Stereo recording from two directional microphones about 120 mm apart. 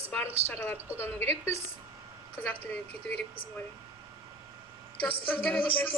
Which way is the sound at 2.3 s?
10° left (ahead or behind).